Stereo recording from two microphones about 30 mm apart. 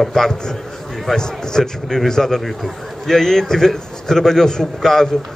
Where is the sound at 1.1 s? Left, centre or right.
Centre.